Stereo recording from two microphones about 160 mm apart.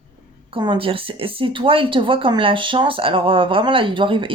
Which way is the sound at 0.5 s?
30° right (ahead or behind).